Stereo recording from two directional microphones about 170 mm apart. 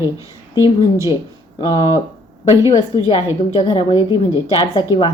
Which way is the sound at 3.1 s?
35° left (ahead or behind).